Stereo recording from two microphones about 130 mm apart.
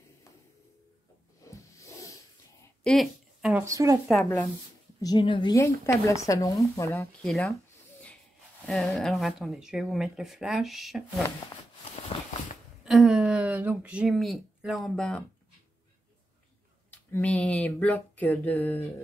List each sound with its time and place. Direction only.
1.4 s rub: 25° left (ahead or behind)
2.8 s a sound: centre (ahead or behind)
3.6 s speech: 25° right (ahead or behind)
5.0 s a woman's voice: 35° left (ahead or behind)
5.6 s speech: 25° left (ahead or behind)
7.1 s speech: 5° left (ahead or behind)
8.6 s speech: centre (ahead or behind)
12.1 s a sound: 45° left (ahead or behind)
12.8 s speech: centre (ahead or behind)
16.9 s a sound: 10° left (ahead or behind)